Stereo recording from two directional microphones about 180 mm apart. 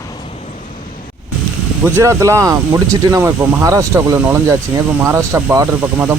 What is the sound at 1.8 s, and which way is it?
Speech, 15° right (ahead or behind).